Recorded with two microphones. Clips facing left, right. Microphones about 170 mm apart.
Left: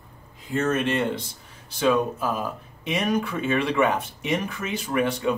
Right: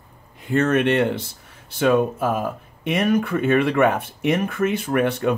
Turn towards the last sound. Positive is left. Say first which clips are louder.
# right 4 dB
turn(degrees=-60)  # may be behind; listen again after turning